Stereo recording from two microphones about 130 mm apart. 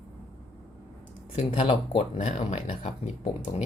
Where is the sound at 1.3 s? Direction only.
50° left (ahead or behind).